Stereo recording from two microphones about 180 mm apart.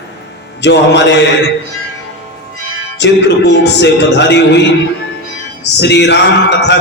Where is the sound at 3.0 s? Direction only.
75° left (ahead or behind).